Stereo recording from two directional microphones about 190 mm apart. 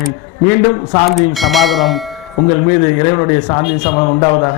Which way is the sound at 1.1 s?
Centre (ahead or behind).